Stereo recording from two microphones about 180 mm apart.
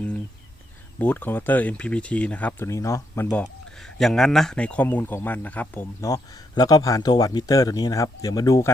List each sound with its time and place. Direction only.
0.9 s speech: 10° left (ahead or behind)
3.4 s speech: 5° left (ahead or behind)